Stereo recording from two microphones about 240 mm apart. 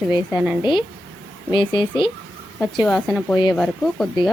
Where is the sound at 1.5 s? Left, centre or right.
Centre.